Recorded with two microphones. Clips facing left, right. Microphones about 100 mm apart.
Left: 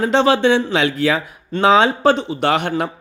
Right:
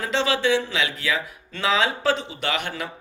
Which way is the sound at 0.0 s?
55° left (ahead or behind).